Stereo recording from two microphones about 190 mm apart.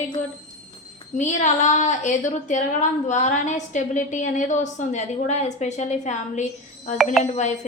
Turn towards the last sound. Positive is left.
turn(degrees=40)  # may be behind; listen again after turning